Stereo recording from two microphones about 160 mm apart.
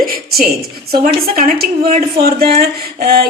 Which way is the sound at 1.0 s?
65° right (ahead or behind).